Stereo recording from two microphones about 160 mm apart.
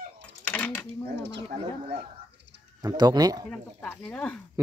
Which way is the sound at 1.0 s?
90° right.